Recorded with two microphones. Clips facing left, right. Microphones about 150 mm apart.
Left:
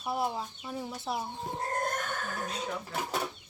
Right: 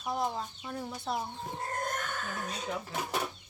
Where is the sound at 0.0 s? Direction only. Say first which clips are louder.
Left 1 dB; 5° left (ahead or behind).